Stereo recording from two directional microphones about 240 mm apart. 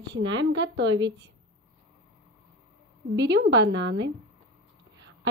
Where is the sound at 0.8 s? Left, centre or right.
Centre.